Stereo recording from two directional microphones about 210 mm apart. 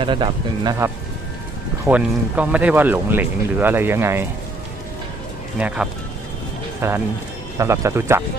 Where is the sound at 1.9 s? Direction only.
5° right (ahead or behind).